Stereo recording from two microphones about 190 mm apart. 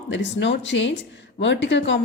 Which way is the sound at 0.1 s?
70° left (ahead or behind).